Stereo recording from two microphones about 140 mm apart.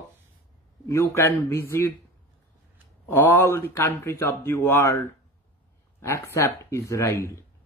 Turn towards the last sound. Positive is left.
turn(degrees=20)  # may be behind; listen again after turning